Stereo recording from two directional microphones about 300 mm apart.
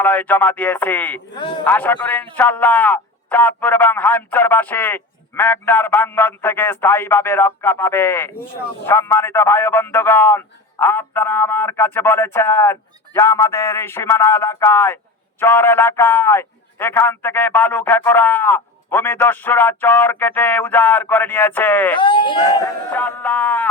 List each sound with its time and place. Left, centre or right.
0.0 s a man's voice: centre
21.9 s a man's voice: centre
22.9 s a man's voice: centre